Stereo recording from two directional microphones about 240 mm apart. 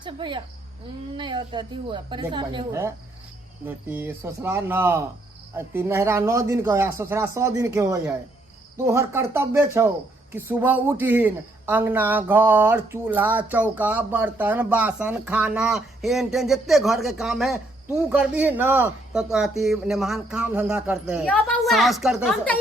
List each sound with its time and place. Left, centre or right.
0.0 s a woman's voice: centre
21.2 s a woman's voice: centre